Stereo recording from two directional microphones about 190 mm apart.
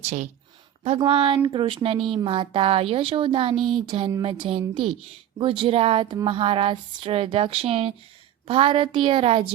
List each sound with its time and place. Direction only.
0.0 s speech: 40° right (ahead or behind)
3.5 s speech: centre (ahead or behind)
3.8 s speech: 25° right (ahead or behind)